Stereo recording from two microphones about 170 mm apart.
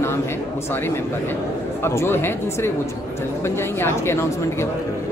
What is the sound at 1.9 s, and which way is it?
A man's voice, 15° left (ahead or behind).